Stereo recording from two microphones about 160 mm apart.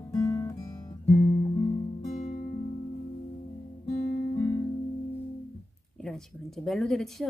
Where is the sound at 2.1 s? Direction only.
50° left (ahead or behind).